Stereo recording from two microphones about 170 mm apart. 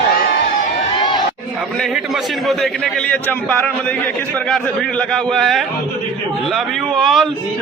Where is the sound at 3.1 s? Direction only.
10° left (ahead or behind).